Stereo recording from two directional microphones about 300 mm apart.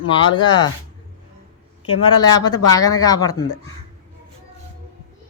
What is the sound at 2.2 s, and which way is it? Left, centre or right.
Speech, centre.